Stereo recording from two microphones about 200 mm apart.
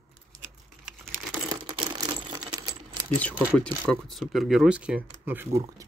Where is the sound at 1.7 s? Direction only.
25° right (ahead or behind).